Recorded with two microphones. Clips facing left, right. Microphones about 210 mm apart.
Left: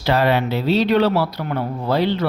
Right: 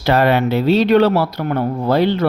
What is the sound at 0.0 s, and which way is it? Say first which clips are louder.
Speech: right 3 dB; 55° right (ahead or behind).